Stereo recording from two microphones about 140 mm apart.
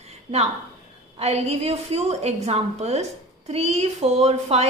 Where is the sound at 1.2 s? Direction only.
50° right (ahead or behind).